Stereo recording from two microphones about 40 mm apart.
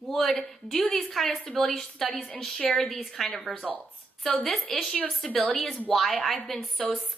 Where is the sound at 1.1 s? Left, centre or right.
Centre.